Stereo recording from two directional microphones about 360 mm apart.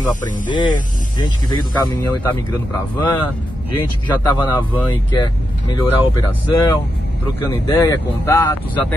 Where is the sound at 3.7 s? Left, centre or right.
Centre.